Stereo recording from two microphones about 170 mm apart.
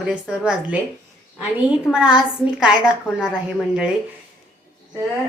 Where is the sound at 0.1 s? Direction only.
5° right (ahead or behind).